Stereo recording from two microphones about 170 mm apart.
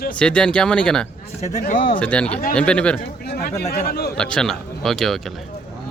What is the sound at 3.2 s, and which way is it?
Speech, 65° left (ahead or behind).